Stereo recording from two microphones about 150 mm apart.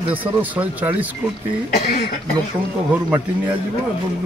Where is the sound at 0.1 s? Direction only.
10° right (ahead or behind).